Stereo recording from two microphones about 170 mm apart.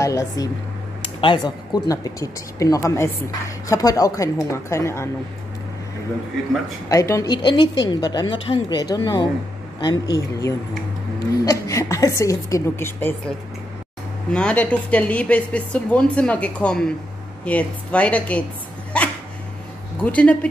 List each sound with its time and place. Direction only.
0.0 s speech: 20° left (ahead or behind)
6.9 s speech: 20° left (ahead or behind)
11.4 s a sound: 20° left (ahead or behind)
12.2 s a woman's voice: 20° left (ahead or behind)
14.3 s a woman's voice: 5° left (ahead or behind)
18.9 s dog: 5° left (ahead or behind)
20.0 s a woman's voice: 10° left (ahead or behind)